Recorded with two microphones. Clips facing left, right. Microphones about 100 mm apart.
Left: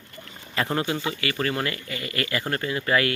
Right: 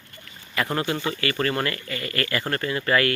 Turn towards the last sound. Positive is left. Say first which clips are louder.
# right 1 dB
turn(degrees=15)  # may be behind; listen again after turning